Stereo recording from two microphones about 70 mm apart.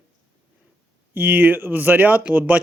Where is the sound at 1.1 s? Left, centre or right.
Right.